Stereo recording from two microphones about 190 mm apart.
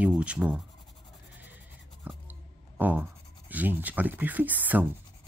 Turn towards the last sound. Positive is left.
turn(degrees=-10)  # may be behind; listen again after turning